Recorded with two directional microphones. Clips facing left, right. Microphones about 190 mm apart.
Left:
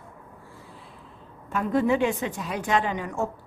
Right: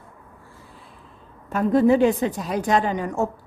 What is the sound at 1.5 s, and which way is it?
A woman's voice, 40° right (ahead or behind).